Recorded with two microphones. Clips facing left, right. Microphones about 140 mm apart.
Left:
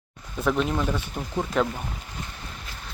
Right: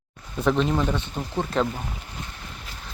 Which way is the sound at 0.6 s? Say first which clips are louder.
Right 2 dB; 5° left (ahead or behind).